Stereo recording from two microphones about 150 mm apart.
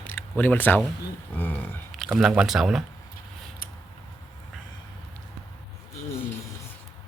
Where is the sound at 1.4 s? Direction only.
10° left (ahead or behind).